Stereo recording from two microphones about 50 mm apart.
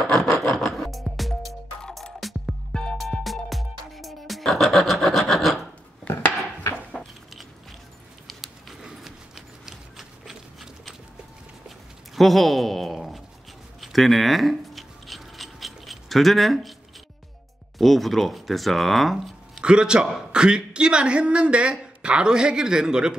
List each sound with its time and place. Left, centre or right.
0.0 s music: centre
1.8 s music: centre
2.1 s music: centre
2.7 s music: left
3.3 s music: centre
7.0 s a sound: centre
8.3 s a sound: centre
9.7 s clip-clop: centre
12.2 s a sound: centre
13.7 s scissors: centre
17.7 s speech: centre
19.6 s speech: centre